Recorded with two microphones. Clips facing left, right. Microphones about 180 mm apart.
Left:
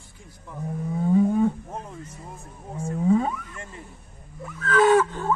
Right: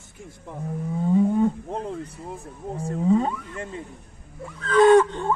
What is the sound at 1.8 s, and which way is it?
Speech, 60° right (ahead or behind).